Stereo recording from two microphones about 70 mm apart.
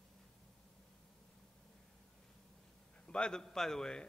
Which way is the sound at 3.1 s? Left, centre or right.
Centre.